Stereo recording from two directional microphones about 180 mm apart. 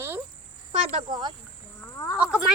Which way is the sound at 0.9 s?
30° right (ahead or behind).